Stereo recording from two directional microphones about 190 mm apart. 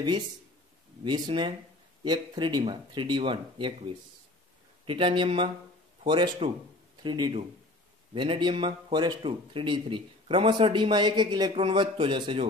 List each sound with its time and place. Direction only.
1.0 s speech: 25° right (ahead or behind)
4.8 s speech: 25° right (ahead or behind)